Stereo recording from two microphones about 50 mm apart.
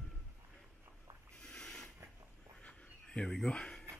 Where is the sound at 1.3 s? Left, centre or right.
Centre.